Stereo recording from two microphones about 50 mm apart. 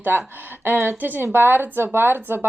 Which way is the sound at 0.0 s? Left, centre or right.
Right.